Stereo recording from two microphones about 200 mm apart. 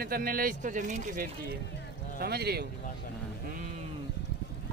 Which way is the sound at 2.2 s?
50° right (ahead or behind).